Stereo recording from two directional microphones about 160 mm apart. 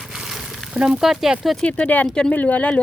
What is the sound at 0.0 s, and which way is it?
A woman's voice, centre (ahead or behind).